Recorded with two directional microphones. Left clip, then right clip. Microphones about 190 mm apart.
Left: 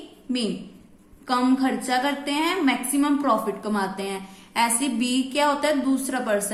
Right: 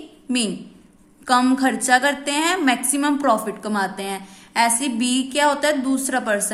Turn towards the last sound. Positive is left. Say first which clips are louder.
# right 3 dB
turn(degrees=-25)  # may be behind; listen again after turning